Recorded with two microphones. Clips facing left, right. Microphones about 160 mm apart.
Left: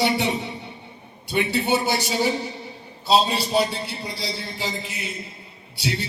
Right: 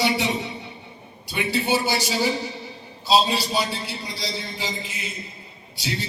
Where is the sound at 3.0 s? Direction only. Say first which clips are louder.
Even; 60° left (ahead or behind).